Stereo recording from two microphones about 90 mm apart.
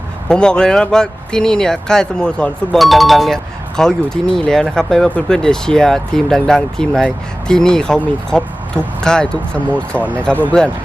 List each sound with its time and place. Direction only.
0.3 s speech: 10° left (ahead or behind)